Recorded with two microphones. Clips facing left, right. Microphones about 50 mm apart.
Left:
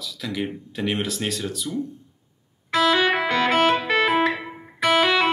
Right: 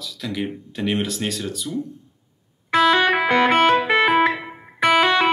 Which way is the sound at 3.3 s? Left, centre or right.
Centre.